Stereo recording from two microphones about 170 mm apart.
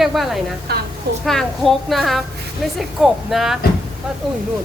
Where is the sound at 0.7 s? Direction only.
70° right (ahead or behind).